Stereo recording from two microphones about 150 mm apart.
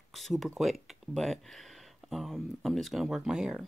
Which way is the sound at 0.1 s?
Centre (ahead or behind).